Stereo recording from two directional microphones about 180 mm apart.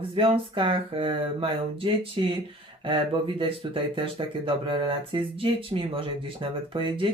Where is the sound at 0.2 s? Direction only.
30° right (ahead or behind).